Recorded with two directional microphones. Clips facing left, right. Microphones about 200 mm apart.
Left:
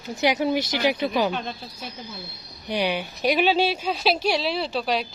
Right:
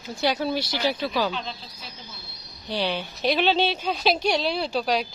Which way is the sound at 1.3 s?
55° left (ahead or behind).